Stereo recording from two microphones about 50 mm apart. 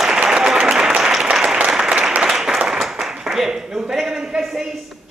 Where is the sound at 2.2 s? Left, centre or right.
Centre.